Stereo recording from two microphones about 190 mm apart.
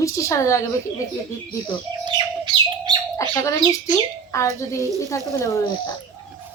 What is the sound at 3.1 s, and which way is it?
Speech, 15° left (ahead or behind).